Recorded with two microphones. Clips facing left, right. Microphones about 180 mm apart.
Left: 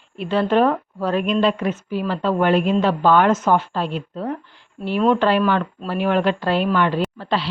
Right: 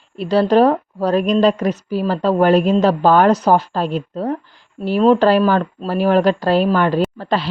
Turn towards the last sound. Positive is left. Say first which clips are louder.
# right 4 dB
turn(degrees=-45)  # may be behind; listen again after turning